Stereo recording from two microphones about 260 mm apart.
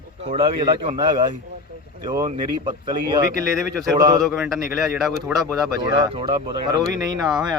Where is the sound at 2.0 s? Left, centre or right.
Centre.